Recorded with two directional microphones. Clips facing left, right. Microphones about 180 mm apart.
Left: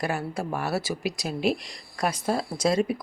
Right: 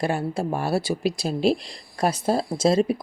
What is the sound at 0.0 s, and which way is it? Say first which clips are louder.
Speech: right 4 dB; 30° right (ahead or behind).